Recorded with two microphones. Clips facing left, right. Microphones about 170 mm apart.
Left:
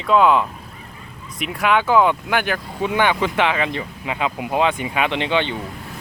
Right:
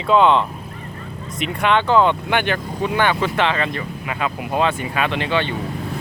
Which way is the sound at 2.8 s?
15° left (ahead or behind).